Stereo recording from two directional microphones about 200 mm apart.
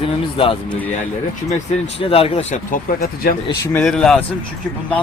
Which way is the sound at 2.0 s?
30° left (ahead or behind).